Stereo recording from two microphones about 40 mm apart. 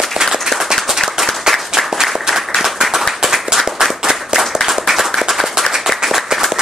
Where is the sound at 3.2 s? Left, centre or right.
Centre.